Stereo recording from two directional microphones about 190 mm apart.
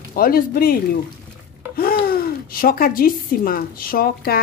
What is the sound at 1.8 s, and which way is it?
A woman's voice, 50° left (ahead or behind).